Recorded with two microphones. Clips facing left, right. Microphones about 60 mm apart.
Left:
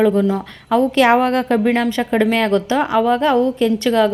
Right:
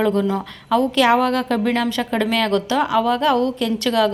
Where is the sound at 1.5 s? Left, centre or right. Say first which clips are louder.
Left 3 dB; centre.